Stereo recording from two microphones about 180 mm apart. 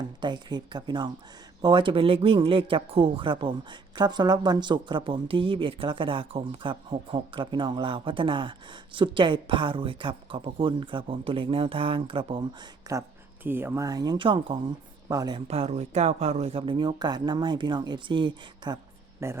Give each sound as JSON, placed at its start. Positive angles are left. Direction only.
{"t": 0.2, "sound": "speech", "side_deg": -25}
{"t": 15.4, "sound": "speech", "side_deg": -35}